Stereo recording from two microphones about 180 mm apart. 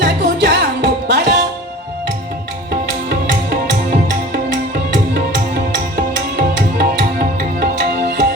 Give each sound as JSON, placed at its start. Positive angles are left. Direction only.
{"t": 0.0, "sound": "music", "side_deg": -70}
{"t": 2.8, "sound": "music", "side_deg": -65}